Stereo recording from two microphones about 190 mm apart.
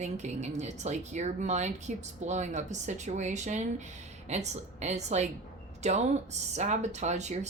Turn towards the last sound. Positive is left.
turn(degrees=-35)  # may be behind; listen again after turning